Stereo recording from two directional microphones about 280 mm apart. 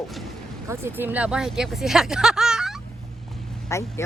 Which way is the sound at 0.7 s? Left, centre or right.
Centre.